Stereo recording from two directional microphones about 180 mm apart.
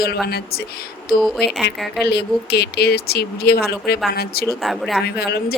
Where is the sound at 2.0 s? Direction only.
65° left (ahead or behind).